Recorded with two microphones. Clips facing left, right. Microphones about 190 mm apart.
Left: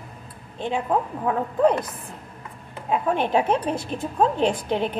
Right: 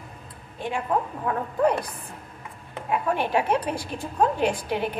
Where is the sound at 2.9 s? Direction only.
25° left (ahead or behind).